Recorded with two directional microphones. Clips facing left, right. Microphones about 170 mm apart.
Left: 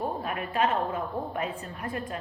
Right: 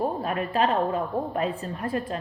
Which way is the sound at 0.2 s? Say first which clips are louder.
Right 3 dB; 35° right (ahead or behind).